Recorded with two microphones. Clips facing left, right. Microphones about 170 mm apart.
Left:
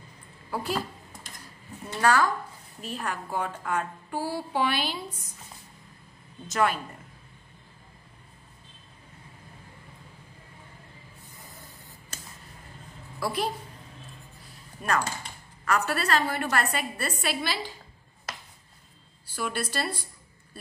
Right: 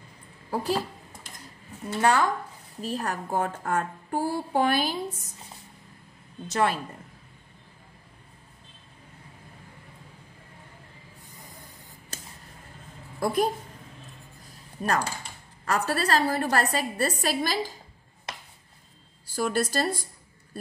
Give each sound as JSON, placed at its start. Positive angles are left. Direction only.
{"t": 0.5, "sound": "a woman's voice", "side_deg": -35}
{"t": 2.0, "sound": "speech", "side_deg": -20}
{"t": 2.8, "sound": "a woman's voice", "side_deg": -40}
{"t": 6.4, "sound": "a woman's voice", "side_deg": -30}
{"t": 13.2, "sound": "a woman's voice", "side_deg": -45}
{"t": 14.8, "sound": "a woman's voice", "side_deg": -35}
{"t": 19.3, "sound": "a woman's voice", "side_deg": -45}